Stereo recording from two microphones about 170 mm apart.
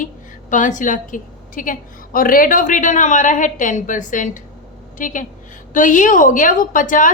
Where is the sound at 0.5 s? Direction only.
50° left (ahead or behind).